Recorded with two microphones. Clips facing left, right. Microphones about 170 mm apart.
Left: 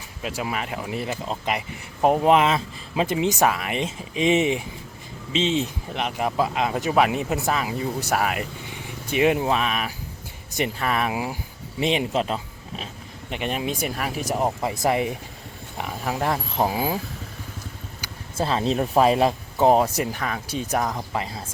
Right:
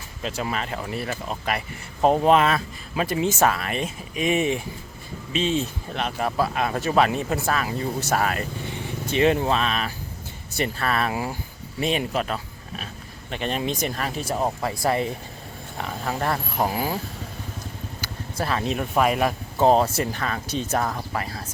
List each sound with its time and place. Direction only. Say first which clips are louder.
0.2 s speech: even; 10° left (ahead or behind)
18.3 s speech: left 3 dB; 25° left (ahead or behind)
19.5 s speech: even; 15° left (ahead or behind)